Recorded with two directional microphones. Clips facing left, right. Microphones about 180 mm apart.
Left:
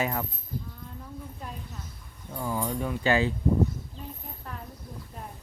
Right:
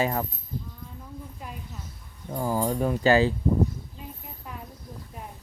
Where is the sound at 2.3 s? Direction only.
40° right (ahead or behind).